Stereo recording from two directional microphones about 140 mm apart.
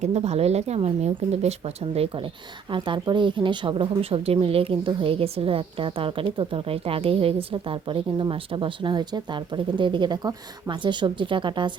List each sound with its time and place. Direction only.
0.0 s a woman's voice: 50° right (ahead or behind)